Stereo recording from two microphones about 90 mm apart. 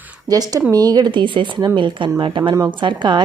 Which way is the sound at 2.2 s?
75° right (ahead or behind).